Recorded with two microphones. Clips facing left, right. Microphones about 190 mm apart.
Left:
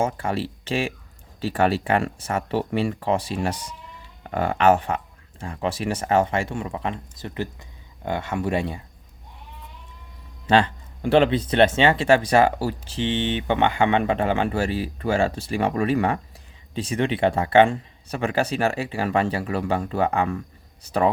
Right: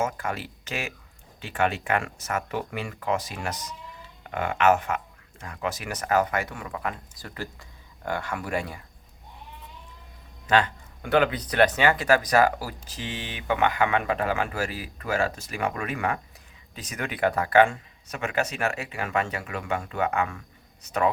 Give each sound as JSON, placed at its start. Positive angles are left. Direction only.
{"t": 0.0, "sound": "speech", "side_deg": 30}
{"t": 10.4, "sound": "speech", "side_deg": 30}